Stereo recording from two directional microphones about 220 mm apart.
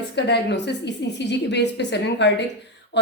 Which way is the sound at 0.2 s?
50° left (ahead or behind).